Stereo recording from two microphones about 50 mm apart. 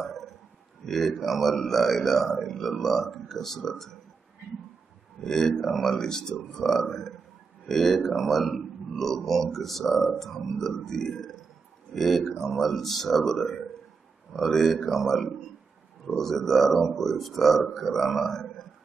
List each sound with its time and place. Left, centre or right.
0.0 s a sound: centre
0.8 s speech: centre
5.2 s speech: centre